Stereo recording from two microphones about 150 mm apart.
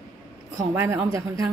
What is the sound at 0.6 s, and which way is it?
Speech, 20° right (ahead or behind).